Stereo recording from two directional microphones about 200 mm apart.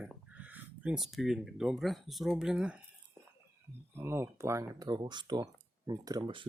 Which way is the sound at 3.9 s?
10° right (ahead or behind).